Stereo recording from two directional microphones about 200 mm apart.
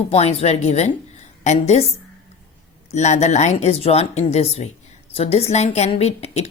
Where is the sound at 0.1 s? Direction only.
30° left (ahead or behind).